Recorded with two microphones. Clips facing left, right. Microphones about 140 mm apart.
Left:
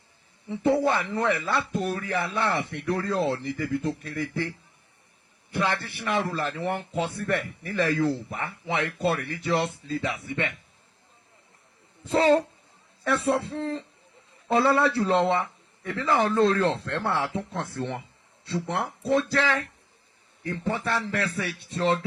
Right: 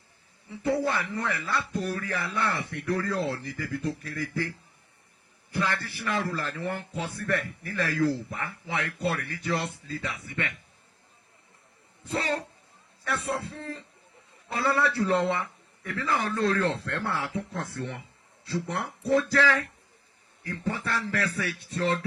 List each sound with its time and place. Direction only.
0.4 s a man's voice: 25° left (ahead or behind)
12.0 s a man's voice: 25° left (ahead or behind)